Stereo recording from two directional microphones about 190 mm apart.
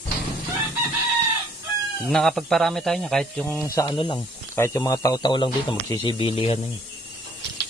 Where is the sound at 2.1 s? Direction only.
Centre (ahead or behind).